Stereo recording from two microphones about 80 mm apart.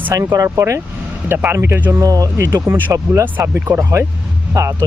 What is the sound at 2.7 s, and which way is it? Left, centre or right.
Speech, right.